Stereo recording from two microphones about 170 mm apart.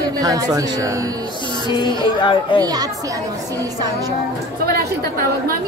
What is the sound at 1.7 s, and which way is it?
Speech, 25° left (ahead or behind).